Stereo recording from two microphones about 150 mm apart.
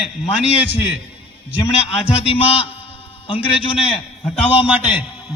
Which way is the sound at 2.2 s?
40° left (ahead or behind).